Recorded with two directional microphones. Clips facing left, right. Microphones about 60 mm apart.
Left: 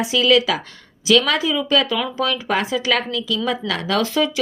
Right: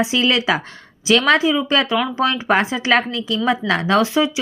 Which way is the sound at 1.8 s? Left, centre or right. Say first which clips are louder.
Right 3 dB; centre.